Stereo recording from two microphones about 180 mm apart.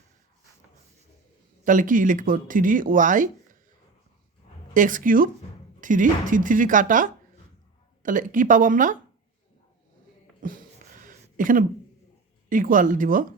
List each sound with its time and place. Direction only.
1.6 s speech: 45° right (ahead or behind)
4.7 s speech: 45° right (ahead or behind)
10.4 s a sound: 45° right (ahead or behind)
12.5 s speech: 50° right (ahead or behind)